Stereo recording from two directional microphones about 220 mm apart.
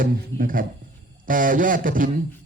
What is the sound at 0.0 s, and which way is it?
Speech, 40° right (ahead or behind).